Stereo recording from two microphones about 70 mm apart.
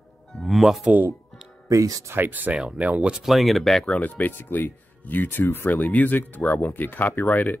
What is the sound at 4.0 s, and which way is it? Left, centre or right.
Speech, left.